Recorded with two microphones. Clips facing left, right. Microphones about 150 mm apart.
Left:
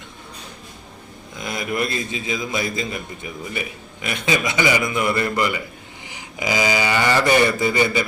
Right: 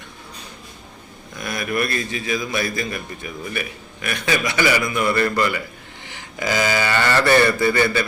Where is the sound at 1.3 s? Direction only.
20° left (ahead or behind).